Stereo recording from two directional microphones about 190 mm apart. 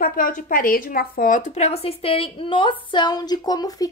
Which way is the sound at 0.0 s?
50° left (ahead or behind).